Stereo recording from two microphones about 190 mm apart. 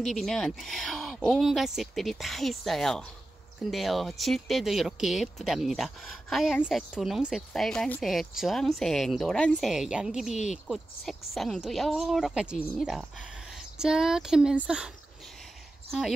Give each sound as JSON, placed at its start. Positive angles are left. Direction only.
{"t": 0.0, "sound": "speech", "side_deg": 0}
{"t": 10.3, "sound": "speech", "side_deg": 40}
{"t": 10.7, "sound": "speech", "side_deg": 0}
{"t": 15.9, "sound": "speech", "side_deg": 0}